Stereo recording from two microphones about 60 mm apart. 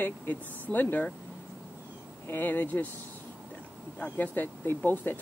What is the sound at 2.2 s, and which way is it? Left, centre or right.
Speech, left.